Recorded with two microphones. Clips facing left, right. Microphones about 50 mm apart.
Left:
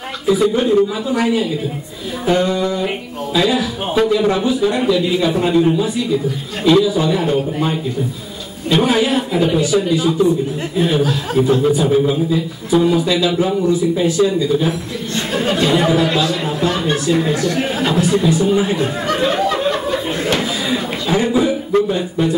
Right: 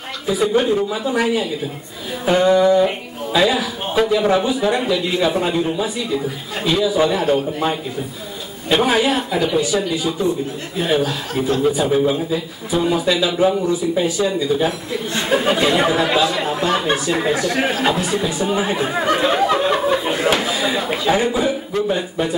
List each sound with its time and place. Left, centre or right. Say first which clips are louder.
0.3 s a man's voice: left 3 dB; centre
8.7 s a man's voice: left 1 dB; centre